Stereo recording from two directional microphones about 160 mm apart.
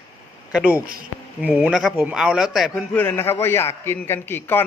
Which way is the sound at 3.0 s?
15° left (ahead or behind).